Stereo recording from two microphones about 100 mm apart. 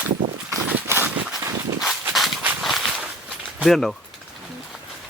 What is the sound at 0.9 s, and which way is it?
Horse, 20° right (ahead or behind).